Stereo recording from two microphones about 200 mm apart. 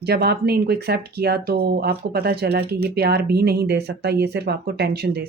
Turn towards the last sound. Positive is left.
turn(degrees=-55)  # may be behind; listen again after turning